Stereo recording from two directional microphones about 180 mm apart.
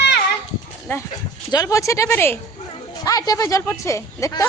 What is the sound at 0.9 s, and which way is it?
Speech, 15° left (ahead or behind).